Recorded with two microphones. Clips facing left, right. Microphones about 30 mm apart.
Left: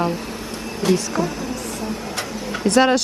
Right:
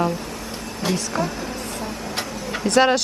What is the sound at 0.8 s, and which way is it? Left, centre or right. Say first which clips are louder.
Speech: left 4 dB; centre.